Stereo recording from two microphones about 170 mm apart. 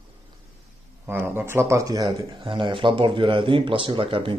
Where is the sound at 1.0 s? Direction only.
15° right (ahead or behind).